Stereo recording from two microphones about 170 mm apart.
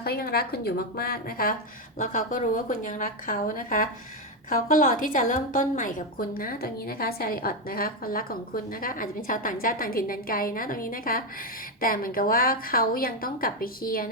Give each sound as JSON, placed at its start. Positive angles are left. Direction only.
{"t": 0.0, "sound": "a woman's voice", "side_deg": 65}
{"t": 2.0, "sound": "a woman's voice", "side_deg": 50}